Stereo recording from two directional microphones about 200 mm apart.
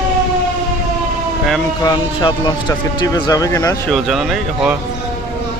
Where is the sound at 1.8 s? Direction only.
20° left (ahead or behind).